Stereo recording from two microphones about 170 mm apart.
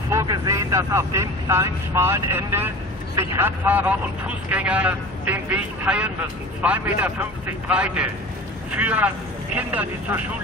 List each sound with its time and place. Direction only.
0.1 s a man's voice: 20° right (ahead or behind)